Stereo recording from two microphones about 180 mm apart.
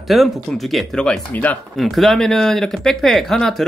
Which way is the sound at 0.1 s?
Centre (ahead or behind).